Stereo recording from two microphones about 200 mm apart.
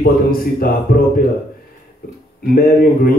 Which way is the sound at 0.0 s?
45° left (ahead or behind).